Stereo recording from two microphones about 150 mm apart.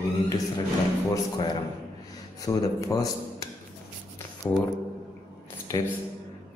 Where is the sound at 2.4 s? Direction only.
25° left (ahead or behind).